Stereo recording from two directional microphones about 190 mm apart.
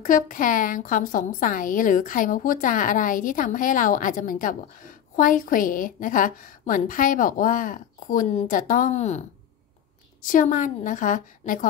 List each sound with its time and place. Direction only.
0.0 s a woman's voice: 45° left (ahead or behind)
10.2 s a woman's voice: 45° left (ahead or behind)